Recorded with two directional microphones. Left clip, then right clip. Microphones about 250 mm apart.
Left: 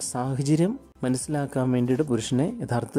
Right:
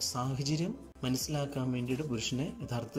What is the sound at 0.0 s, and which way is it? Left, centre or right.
Speech, left.